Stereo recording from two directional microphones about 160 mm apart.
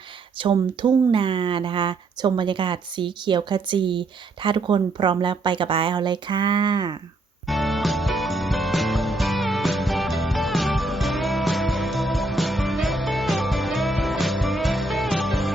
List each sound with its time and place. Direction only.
0.4 s speech: 30° right (ahead or behind)
7.4 s music: centre (ahead or behind)